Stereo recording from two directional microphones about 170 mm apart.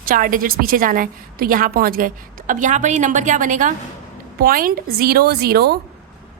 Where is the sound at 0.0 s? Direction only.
55° right (ahead or behind).